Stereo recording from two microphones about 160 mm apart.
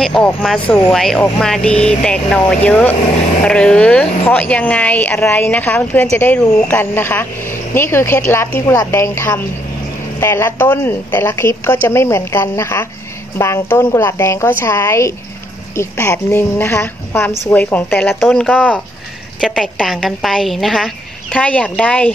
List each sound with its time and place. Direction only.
0.0 s speech: 5° left (ahead or behind)